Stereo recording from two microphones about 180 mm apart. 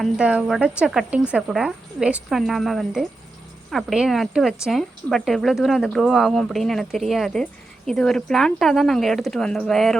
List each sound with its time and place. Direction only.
0.0 s speech: 5° right (ahead or behind)